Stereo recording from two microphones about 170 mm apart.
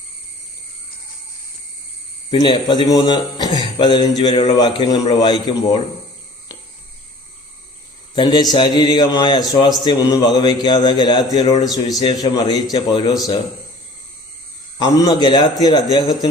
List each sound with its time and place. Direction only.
2.3 s a man's voice: 30° left (ahead or behind)
8.1 s a man's voice: 25° left (ahead or behind)
14.8 s a man's voice: 25° left (ahead or behind)